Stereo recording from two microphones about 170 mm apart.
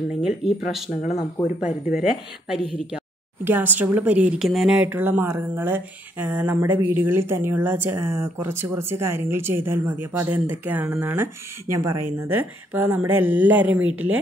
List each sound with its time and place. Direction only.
0.2 s speech: 5° right (ahead or behind)